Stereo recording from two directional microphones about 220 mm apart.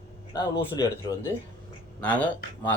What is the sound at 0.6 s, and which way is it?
Speech, 15° left (ahead or behind).